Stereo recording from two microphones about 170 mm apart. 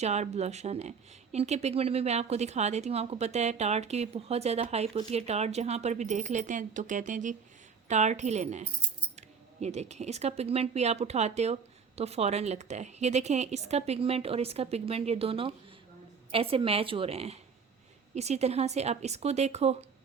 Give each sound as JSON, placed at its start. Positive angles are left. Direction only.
{"t": 0.0, "sound": "speech", "side_deg": -40}